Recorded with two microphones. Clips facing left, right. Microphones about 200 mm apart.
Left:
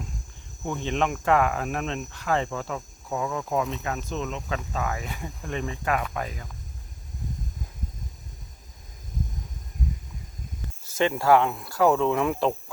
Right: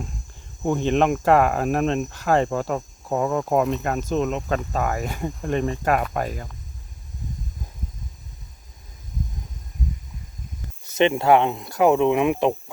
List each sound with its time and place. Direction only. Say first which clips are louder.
0.6 s speech: right 7 dB; 40° right (ahead or behind)
10.8 s speech: right 4 dB; 20° right (ahead or behind)